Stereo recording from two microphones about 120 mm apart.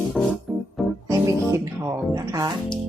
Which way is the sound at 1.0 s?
25° right (ahead or behind).